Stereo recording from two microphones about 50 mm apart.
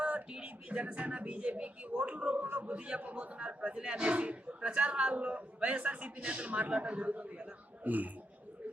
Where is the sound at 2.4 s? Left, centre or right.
Right.